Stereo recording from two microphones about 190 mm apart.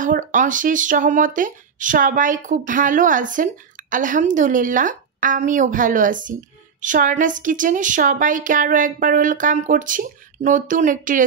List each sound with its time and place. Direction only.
0.0 s speech: 40° right (ahead or behind)